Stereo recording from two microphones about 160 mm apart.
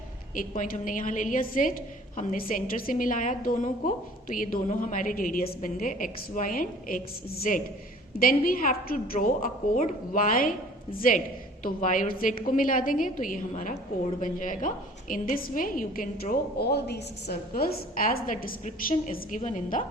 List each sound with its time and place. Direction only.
0.3 s a woman's voice: 55° left (ahead or behind)